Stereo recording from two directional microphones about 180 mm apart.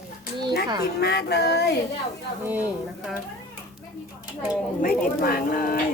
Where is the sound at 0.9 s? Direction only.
65° left (ahead or behind).